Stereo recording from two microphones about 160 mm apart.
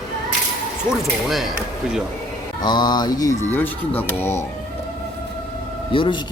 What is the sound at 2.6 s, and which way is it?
Speech, 25° left (ahead or behind).